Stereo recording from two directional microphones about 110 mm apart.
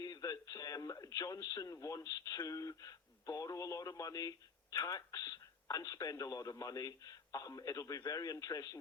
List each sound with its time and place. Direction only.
0.0 s speech: 35° left (ahead or behind)